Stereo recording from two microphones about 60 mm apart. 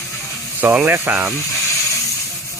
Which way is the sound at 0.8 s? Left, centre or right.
Right.